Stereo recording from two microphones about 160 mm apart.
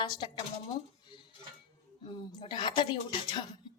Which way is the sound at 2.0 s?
30° left (ahead or behind).